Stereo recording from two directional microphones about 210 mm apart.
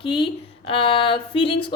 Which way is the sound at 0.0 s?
20° left (ahead or behind).